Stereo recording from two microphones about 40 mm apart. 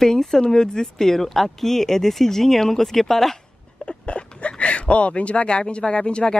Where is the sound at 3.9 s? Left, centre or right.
Left.